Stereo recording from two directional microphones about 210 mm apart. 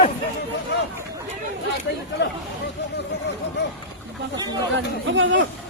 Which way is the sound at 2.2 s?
55° left (ahead or behind).